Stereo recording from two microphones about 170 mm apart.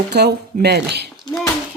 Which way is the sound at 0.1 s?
80° right.